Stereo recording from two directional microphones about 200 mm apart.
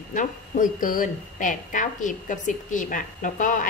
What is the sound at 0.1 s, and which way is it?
A woman's voice, 40° left (ahead or behind).